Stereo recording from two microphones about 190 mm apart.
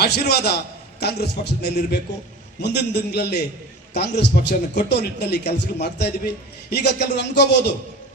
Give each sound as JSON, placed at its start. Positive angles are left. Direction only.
{"t": 0.0, "sound": "a man's voice", "side_deg": 55}